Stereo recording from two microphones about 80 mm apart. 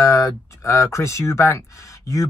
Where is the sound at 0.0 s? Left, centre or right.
Left.